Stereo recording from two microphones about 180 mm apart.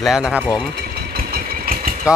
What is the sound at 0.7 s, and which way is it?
Engine, 60° right (ahead or behind).